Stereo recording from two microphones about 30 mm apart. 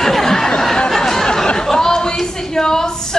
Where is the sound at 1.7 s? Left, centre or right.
Left.